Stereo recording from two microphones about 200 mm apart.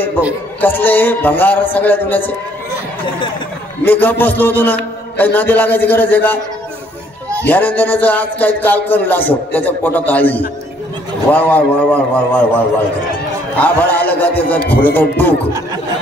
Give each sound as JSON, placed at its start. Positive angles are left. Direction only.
{"t": 0.6, "sound": "music", "side_deg": 10}
{"t": 3.8, "sound": "music", "side_deg": 10}
{"t": 7.4, "sound": "music", "side_deg": 10}
{"t": 13.6, "sound": "music", "side_deg": 10}